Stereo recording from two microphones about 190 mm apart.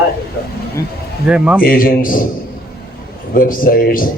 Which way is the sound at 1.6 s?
50° left (ahead or behind).